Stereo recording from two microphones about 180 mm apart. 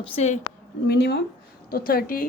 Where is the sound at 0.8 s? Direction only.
65° left (ahead or behind).